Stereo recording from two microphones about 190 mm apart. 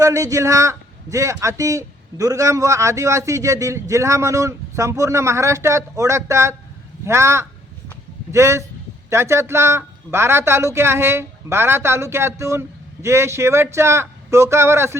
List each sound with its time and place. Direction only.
0.0 s a man's voice: 15° right (ahead or behind)